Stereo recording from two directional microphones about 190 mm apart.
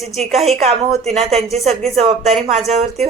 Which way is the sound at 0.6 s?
35° right (ahead or behind).